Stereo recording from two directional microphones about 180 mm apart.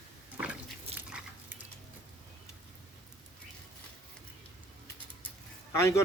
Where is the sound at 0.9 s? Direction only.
10° right (ahead or behind).